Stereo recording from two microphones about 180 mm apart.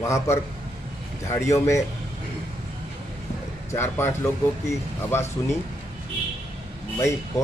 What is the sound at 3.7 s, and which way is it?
Speech, 15° left (ahead or behind).